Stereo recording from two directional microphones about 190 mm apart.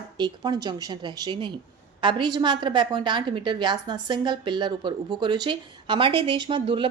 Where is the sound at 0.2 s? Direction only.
20° right (ahead or behind).